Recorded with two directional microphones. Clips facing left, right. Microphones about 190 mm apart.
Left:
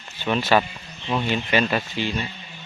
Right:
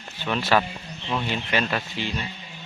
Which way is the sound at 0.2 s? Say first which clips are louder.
Left 2 dB; centre (ahead or behind).